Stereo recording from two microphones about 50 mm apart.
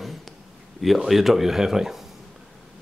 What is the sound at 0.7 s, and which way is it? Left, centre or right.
Speech, centre.